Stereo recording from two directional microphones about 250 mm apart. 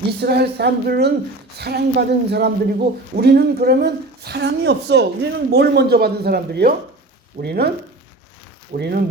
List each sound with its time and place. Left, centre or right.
0.2 s speech: right
8.7 s speech: right